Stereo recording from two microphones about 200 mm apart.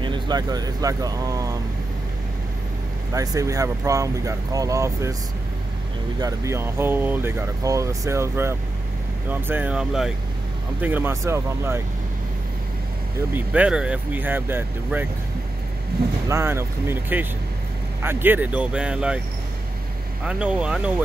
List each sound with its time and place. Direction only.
0.0 s speech: 20° right (ahead or behind)
3.1 s speech: 15° right (ahead or behind)
6.1 s speech: 15° right (ahead or behind)
13.5 s speech: 5° right (ahead or behind)
16.3 s speech: 15° right (ahead or behind)
20.2 s speech: 5° right (ahead or behind)